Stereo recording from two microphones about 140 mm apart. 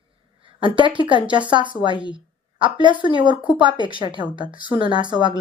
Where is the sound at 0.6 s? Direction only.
35° right (ahead or behind).